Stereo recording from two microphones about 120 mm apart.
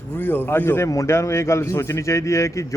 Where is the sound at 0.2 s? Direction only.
15° left (ahead or behind).